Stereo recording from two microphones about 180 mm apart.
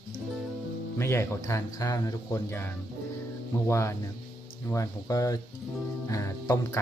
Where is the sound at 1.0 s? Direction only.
15° left (ahead or behind).